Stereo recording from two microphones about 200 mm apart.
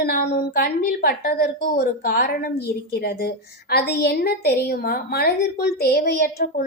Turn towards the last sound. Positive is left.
turn(degrees=45)  # may be behind; listen again after turning